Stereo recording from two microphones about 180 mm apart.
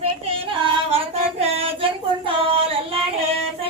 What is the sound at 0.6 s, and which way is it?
Child singing, 30° right (ahead or behind).